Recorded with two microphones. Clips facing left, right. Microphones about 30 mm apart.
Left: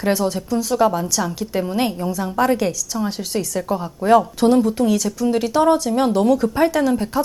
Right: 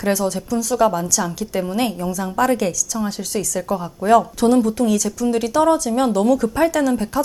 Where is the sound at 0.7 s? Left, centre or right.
Centre.